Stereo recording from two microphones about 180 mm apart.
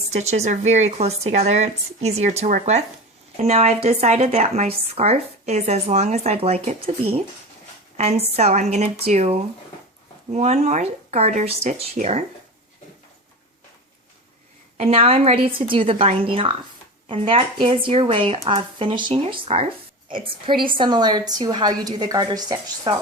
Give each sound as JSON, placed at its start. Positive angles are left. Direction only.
{"t": 0.1, "sound": "speech", "side_deg": -40}
{"t": 7.9, "sound": "a woman's voice", "side_deg": -35}
{"t": 14.8, "sound": "a woman's voice", "side_deg": -35}